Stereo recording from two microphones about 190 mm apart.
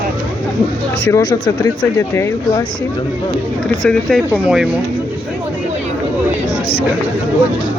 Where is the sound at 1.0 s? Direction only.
15° left (ahead or behind).